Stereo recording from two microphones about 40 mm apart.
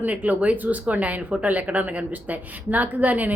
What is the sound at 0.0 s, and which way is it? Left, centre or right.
A woman's voice, right.